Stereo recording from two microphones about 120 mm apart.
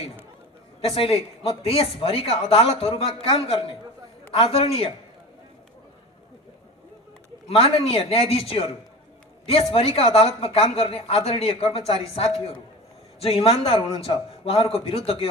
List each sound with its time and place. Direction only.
0.7 s a woman's voice: 55° left (ahead or behind)
7.4 s a woman's voice: 55° left (ahead or behind)